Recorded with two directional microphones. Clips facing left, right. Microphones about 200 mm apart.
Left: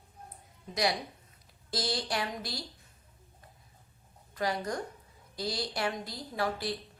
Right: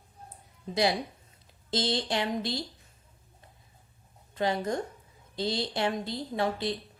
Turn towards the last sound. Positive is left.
turn(degrees=-25)  # may be behind; listen again after turning